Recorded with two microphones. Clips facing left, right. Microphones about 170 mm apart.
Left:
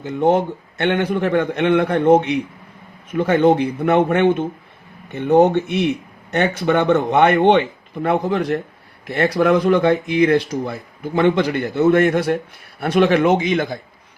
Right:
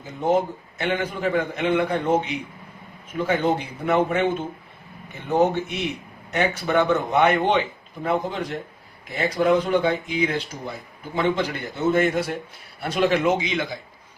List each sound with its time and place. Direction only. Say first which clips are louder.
0.0 s a man's voice: left 5 dB; 70° left (ahead or behind); by 13.7 s 50° left (ahead or behind)